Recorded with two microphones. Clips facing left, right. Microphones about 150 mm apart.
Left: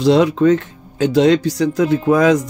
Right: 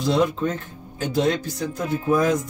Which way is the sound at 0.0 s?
90° left.